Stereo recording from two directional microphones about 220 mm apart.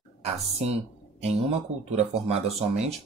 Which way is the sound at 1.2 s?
30° right (ahead or behind).